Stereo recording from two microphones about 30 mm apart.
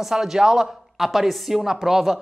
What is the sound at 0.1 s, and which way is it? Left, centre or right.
Speech, centre.